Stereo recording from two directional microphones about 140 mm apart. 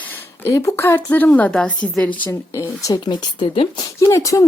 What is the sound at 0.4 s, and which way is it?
A woman's voice, 20° left (ahead or behind).